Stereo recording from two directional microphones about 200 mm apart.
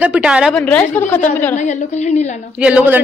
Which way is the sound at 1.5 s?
35° left (ahead or behind).